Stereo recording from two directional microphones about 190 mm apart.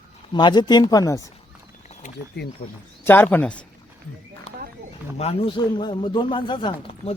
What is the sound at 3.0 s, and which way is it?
Speech, 10° left (ahead or behind).